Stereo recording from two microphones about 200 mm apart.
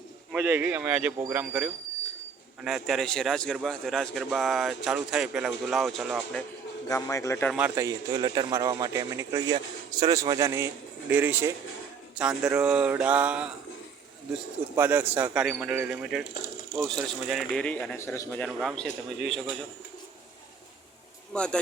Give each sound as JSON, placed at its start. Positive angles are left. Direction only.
{"t": 0.3, "sound": "a man's voice", "side_deg": -10}
{"t": 6.8, "sound": "a man's voice", "side_deg": 15}
{"t": 7.5, "sound": "a man's voice", "side_deg": -10}
{"t": 14.8, "sound": "a man's voice", "side_deg": -10}
{"t": 21.3, "sound": "a man's voice", "side_deg": 5}